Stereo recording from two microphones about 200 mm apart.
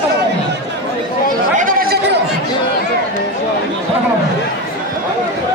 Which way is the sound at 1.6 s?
45° right (ahead or behind).